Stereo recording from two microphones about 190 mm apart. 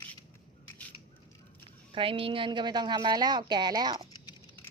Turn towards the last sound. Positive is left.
turn(degrees=-20)  # may be behind; listen again after turning